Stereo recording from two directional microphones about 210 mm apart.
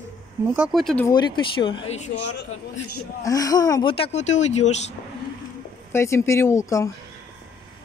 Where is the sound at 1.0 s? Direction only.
20° left (ahead or behind).